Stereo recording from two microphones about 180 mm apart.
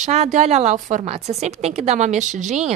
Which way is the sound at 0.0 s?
40° right (ahead or behind).